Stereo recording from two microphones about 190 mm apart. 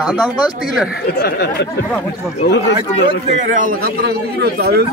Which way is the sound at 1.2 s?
60° left (ahead or behind).